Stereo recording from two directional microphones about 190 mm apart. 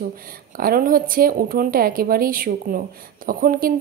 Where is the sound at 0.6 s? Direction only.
50° right (ahead or behind).